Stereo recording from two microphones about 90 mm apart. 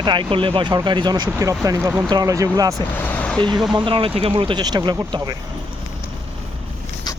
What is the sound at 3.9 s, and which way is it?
Speech, 85° right.